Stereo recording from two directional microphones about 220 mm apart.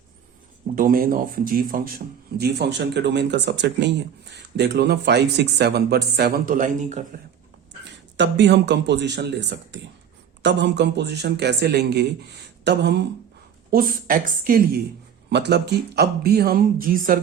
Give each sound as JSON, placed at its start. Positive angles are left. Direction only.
{"t": 0.8, "sound": "speech", "side_deg": -40}
{"t": 7.9, "sound": "a woman's voice", "side_deg": -55}